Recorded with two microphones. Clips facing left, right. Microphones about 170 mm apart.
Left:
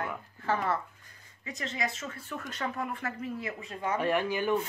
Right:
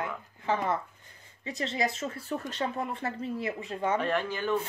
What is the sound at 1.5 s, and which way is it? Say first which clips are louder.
Speech: right 4 dB; 30° right (ahead or behind).